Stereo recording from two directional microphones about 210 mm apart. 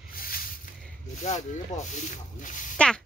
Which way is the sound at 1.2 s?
35° left (ahead or behind).